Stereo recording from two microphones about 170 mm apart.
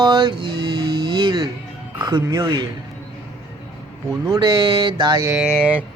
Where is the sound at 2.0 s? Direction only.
25° right (ahead or behind).